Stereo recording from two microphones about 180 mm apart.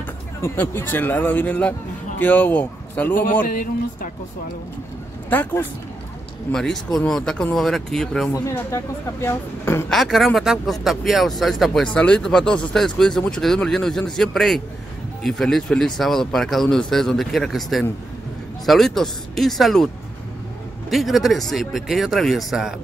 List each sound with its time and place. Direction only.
0.4 s a man's voice: 10° left (ahead or behind)
3.4 s speech: 50° left (ahead or behind)
5.3 s speech: 10° left (ahead or behind)
8.5 s speech: 15° left (ahead or behind)
9.8 s speech: centre (ahead or behind)
20.9 s speech: centre (ahead or behind)